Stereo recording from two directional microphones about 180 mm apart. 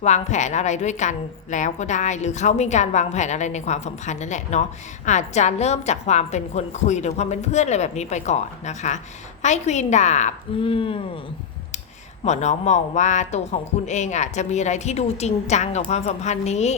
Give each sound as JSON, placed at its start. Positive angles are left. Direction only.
{"t": 0.0, "sound": "a woman's voice", "side_deg": 40}
{"t": 10.6, "sound": "speech", "side_deg": 30}
{"t": 12.2, "sound": "a woman's voice", "side_deg": 40}